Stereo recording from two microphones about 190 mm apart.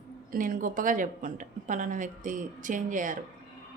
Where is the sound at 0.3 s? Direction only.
45° right (ahead or behind).